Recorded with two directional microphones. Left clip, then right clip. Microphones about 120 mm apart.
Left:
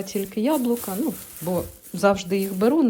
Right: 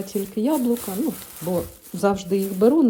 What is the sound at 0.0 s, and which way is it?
Speech, 30° right (ahead or behind).